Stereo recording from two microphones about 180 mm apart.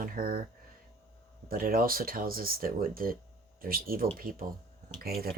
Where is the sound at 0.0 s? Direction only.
50° right (ahead or behind).